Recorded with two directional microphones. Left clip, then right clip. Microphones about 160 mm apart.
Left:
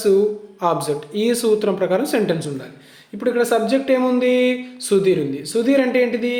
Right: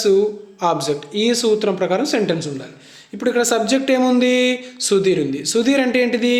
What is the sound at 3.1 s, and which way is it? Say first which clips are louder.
Speech: even; 20° right (ahead or behind).